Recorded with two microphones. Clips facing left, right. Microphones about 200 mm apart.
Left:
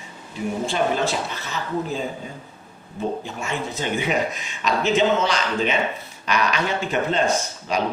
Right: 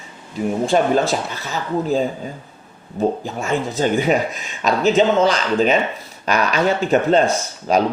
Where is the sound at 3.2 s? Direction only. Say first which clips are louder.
Right 6 dB; 40° right (ahead or behind).